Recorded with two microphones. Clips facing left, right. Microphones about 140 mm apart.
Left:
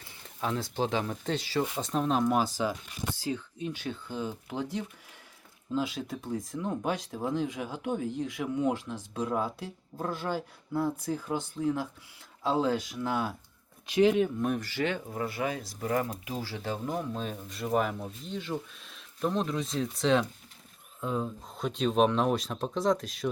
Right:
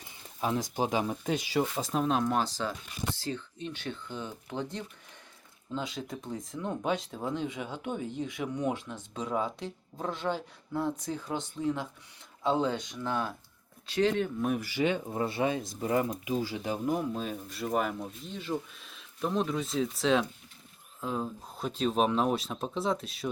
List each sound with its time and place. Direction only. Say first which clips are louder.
0.0 s speech: right 1 dB; 15° right (ahead or behind)
1.8 s speech: left 1 dB; 5° right (ahead or behind); by 14.3 s 10° left (ahead or behind)
14.3 s speech: even; 5° right (ahead or behind)